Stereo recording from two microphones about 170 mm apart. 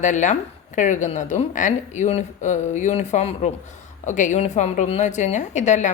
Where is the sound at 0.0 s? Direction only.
45° left (ahead or behind).